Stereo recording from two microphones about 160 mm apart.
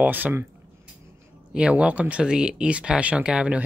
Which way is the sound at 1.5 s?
5° right (ahead or behind).